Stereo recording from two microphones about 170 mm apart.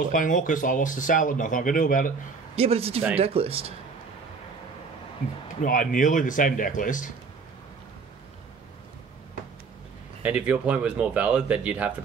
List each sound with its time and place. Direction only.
0.1 s speech: 50° left (ahead or behind)
2.5 s speech: 35° right (ahead or behind)
5.6 s speech: 50° left (ahead or behind)
10.2 s speech: 10° right (ahead or behind)